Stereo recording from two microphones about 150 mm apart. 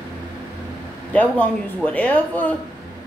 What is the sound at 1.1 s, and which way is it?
Speech, 10° left (ahead or behind).